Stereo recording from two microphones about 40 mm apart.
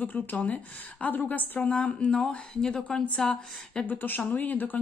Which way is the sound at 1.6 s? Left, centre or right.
Left.